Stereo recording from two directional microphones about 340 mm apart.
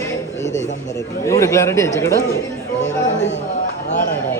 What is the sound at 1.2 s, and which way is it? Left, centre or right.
A man's voice, centre.